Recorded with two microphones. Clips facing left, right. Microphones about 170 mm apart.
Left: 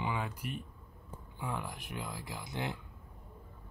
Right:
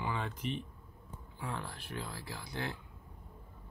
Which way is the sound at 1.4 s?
15° left (ahead or behind).